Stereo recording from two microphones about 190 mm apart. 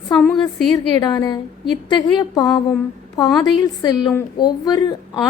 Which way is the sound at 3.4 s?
20° left (ahead or behind).